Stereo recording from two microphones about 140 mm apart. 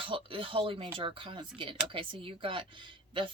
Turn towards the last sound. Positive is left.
turn(degrees=-35)  # may be behind; listen again after turning